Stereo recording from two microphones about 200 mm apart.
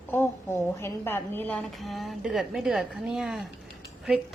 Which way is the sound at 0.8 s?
10° left (ahead or behind).